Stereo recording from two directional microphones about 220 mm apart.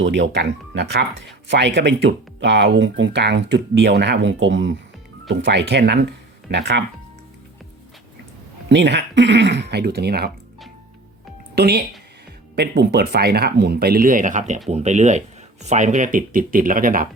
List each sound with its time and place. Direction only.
0.0 s speech: 55° right (ahead or behind)
8.7 s speech: 50° right (ahead or behind)
11.5 s speech: 45° right (ahead or behind)